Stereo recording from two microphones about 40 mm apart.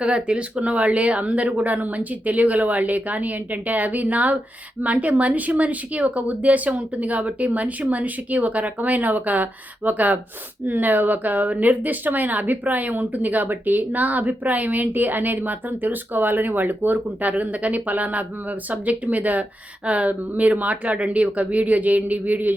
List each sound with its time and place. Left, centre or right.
0.0 s a woman's voice: right